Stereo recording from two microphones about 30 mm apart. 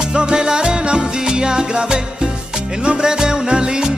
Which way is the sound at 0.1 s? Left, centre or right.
Right.